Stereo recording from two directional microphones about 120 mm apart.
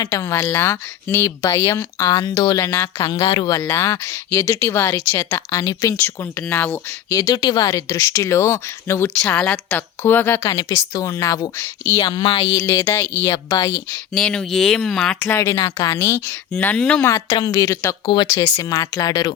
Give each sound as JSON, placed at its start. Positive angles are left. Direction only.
{"t": 0.0, "sound": "speech", "side_deg": 25}
{"t": 2.6, "sound": "speech", "side_deg": 20}
{"t": 3.0, "sound": "speech", "side_deg": 40}
{"t": 3.6, "sound": "speech", "side_deg": 25}
{"t": 6.5, "sound": "speech", "side_deg": 15}
{"t": 7.1, "sound": "speech", "side_deg": 30}
{"t": 12.0, "sound": "speech", "side_deg": 40}
{"t": 12.5, "sound": "speech", "side_deg": 25}
{"t": 13.3, "sound": "speech", "side_deg": 30}
{"t": 14.1, "sound": "speech", "side_deg": 5}
{"t": 15.2, "sound": "speech", "side_deg": 20}
{"t": 17.1, "sound": "speech", "side_deg": 30}